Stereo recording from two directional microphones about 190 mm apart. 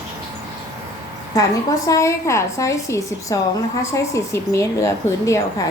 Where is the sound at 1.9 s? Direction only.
15° left (ahead or behind).